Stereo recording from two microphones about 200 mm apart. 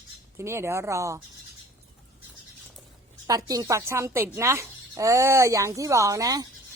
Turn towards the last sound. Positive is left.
turn(degrees=-20)  # may be behind; listen again after turning